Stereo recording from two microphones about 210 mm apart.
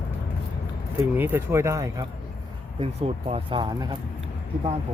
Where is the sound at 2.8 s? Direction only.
25° right (ahead or behind).